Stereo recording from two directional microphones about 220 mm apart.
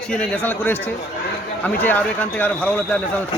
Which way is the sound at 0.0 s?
5° left (ahead or behind).